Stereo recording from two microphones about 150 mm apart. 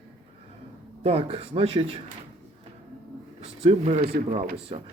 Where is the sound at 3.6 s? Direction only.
45° right (ahead or behind).